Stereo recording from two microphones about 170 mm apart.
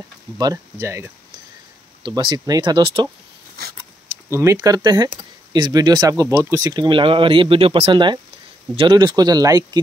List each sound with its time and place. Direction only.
0.4 s speech: 20° right (ahead or behind)
2.0 s speech: 25° right (ahead or behind)
4.3 s speech: 15° right (ahead or behind)